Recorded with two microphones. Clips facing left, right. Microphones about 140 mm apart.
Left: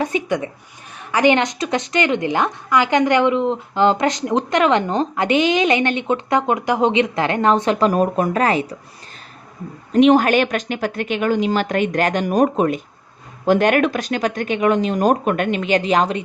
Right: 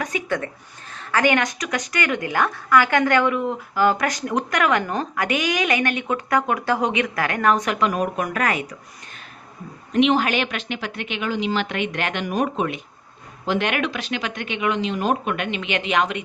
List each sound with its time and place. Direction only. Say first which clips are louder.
0.0 s a sound: left 5 dB; 25° left (ahead or behind)
0.9 s a woman's voice: left 4 dB; 20° left (ahead or behind)
9.9 s a woman's voice: left 6 dB; 45° left (ahead or behind)